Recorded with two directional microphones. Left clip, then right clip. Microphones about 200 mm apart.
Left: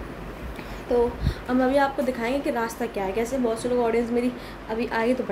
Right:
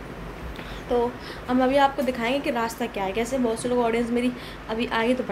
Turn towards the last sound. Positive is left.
turn(degrees=5)  # may be behind; listen again after turning